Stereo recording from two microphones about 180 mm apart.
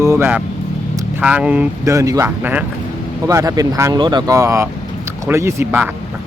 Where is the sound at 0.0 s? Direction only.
15° right (ahead or behind).